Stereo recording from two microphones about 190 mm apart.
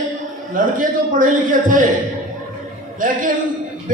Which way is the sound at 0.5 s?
45° right (ahead or behind).